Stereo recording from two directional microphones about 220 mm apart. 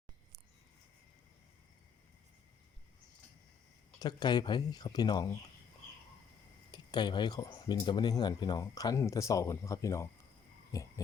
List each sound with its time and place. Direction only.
4.0 s speech: 20° left (ahead or behind)
6.7 s speech: 20° left (ahead or behind)
10.7 s a sound: 15° left (ahead or behind)